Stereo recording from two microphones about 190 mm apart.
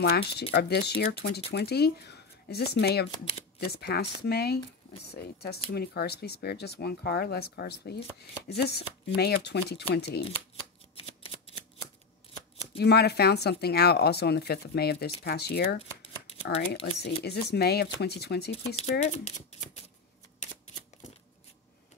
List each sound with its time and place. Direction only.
0.0 s speech: 60° left (ahead or behind)
11.0 s shuffling cards: 30° left (ahead or behind)
12.7 s speech: 60° left (ahead or behind)
16.5 s speech: 35° left (ahead or behind)
17.0 s speech: 55° left (ahead or behind)
18.8 s speech: 35° left (ahead or behind)